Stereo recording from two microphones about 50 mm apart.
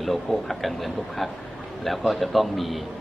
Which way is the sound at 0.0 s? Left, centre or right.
Centre.